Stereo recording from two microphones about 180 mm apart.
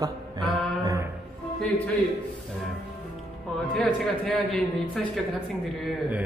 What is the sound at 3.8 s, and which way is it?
A man's voice, 5° left (ahead or behind).